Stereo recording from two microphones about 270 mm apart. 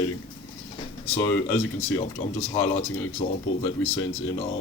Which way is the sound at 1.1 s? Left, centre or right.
Centre.